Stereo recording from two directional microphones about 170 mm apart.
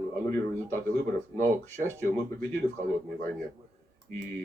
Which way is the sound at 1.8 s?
15° right (ahead or behind).